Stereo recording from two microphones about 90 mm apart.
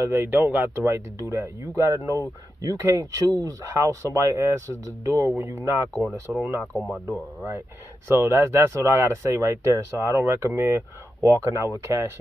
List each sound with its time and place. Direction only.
0.0 s speech: 25° right (ahead or behind)
6.3 s speech: centre (ahead or behind)
7.1 s speech: 30° right (ahead or behind)